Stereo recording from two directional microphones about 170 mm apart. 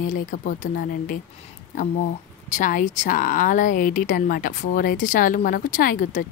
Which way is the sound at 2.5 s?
50° left (ahead or behind).